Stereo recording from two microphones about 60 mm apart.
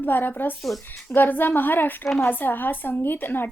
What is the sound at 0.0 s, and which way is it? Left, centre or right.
A woman's voice, left.